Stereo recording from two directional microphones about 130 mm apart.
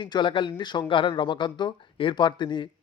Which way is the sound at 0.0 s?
40° left (ahead or behind).